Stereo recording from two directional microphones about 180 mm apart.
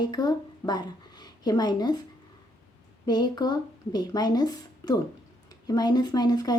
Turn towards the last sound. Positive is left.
turn(degrees=20)  # may be behind; listen again after turning